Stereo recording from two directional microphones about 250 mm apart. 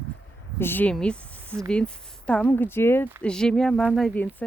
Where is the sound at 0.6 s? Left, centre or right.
Centre.